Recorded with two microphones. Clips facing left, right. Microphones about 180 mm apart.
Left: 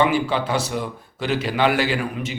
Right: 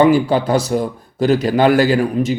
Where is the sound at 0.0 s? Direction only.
40° right (ahead or behind).